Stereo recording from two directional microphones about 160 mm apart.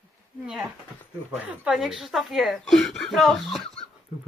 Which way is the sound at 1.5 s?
5° right (ahead or behind).